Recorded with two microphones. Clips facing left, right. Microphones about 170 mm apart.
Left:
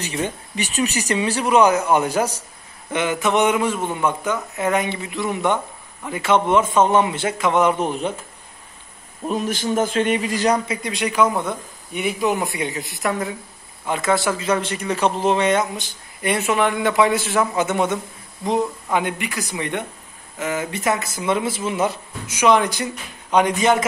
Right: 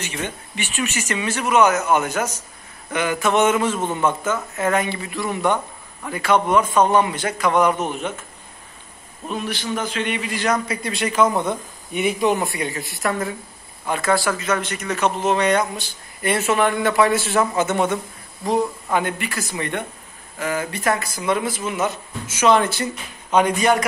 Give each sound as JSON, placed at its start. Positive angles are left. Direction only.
{"t": 0.0, "sound": "speech", "side_deg": 35}
{"t": 2.9, "sound": "a man's voice", "side_deg": 25}
{"t": 9.3, "sound": "speech", "side_deg": 45}
{"t": 10.7, "sound": "speech", "side_deg": 15}
{"t": 11.9, "sound": "speech", "side_deg": 0}
{"t": 12.4, "sound": "a man's voice", "side_deg": 20}
{"t": 18.9, "sound": "a man's voice", "side_deg": 15}
{"t": 22.3, "sound": "a man's voice", "side_deg": 15}